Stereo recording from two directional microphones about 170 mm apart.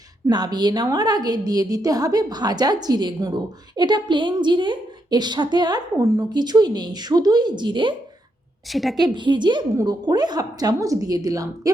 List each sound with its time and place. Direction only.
0.3 s a woman's voice: 25° right (ahead or behind)
8.7 s a woman's voice: centre (ahead or behind)
9.1 s a woman's voice: 25° right (ahead or behind)